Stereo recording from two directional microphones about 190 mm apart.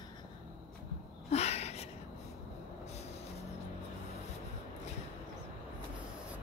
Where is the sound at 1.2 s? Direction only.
35° left (ahead or behind).